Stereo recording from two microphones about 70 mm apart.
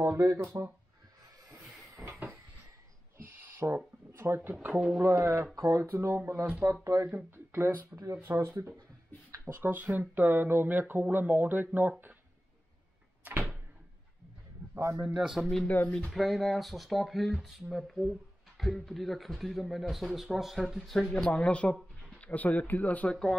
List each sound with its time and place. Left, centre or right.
0.0 s speech: right
1.6 s a sound: centre
3.3 s a sound: right
3.6 s speech: right
4.6 s speech: right
4.9 s speech: right
6.6 s speech: right
8.0 s speech: right
8.3 s speech: right
13.2 s door: right
15.1 s speech: centre
21.3 s speech: centre